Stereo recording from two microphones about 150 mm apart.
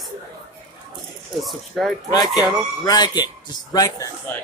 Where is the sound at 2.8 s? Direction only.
25° left (ahead or behind).